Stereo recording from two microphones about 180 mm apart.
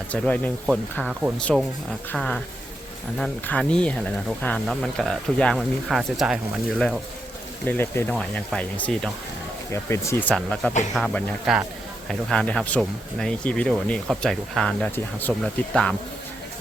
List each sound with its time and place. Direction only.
0.1 s speech: 10° left (ahead or behind)
2.1 s speech: 5° left (ahead or behind)
7.6 s speech: 10° left (ahead or behind)